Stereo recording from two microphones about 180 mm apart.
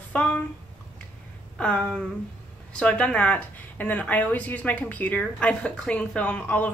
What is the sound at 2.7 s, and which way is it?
Speech, 5° left (ahead or behind).